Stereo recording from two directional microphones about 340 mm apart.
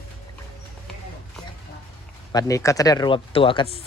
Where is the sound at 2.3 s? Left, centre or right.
Centre.